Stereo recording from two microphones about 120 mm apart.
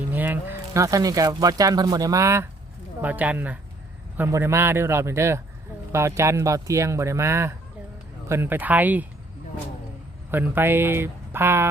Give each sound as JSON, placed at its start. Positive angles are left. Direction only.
{"t": 0.1, "sound": "speech", "side_deg": -15}
{"t": 3.0, "sound": "speech", "side_deg": -15}
{"t": 10.3, "sound": "speech", "side_deg": -15}